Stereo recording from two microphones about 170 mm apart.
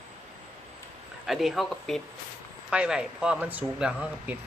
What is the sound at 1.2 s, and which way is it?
Speech, centre (ahead or behind).